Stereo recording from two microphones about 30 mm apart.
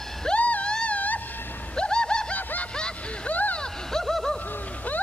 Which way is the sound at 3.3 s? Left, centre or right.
Left.